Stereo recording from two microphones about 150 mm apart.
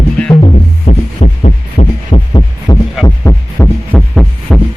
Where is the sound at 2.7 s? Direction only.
25° left (ahead or behind).